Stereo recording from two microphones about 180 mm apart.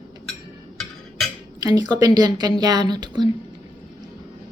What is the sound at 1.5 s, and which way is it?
A woman's voice, 20° right (ahead or behind).